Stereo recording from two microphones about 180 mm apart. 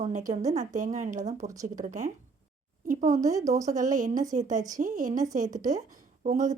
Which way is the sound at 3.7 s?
45° right (ahead or behind).